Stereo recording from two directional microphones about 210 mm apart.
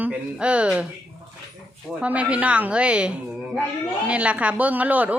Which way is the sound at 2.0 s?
5° right (ahead or behind).